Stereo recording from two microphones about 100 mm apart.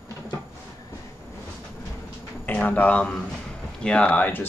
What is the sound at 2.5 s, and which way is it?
Speech, 15° left (ahead or behind).